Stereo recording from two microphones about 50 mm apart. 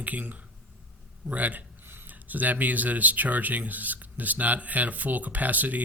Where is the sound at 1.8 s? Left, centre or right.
Right.